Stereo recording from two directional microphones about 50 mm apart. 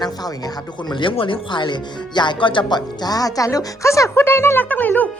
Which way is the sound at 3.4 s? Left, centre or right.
Left.